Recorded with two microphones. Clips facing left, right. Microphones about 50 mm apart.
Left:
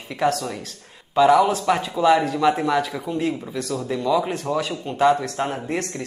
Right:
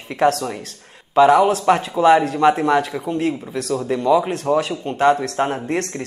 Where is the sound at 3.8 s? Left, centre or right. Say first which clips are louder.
Right 5 dB; right.